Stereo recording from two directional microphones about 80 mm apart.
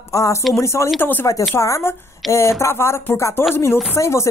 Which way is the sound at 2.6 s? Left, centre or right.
Left.